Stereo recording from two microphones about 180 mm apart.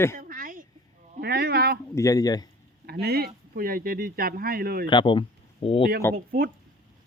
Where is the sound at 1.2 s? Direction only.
60° right (ahead or behind).